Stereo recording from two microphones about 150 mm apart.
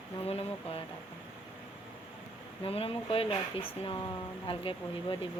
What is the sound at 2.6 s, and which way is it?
Speech, 40° left (ahead or behind).